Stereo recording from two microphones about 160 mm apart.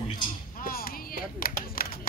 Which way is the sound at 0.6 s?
65° left (ahead or behind).